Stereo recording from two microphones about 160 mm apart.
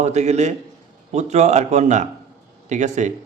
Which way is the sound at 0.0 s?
45° right (ahead or behind).